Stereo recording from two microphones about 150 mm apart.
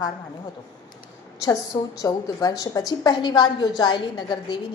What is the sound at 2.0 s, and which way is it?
A woman's voice, 25° left (ahead or behind).